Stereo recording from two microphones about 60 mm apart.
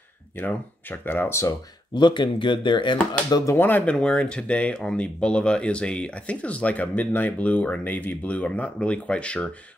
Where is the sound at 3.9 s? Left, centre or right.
Centre.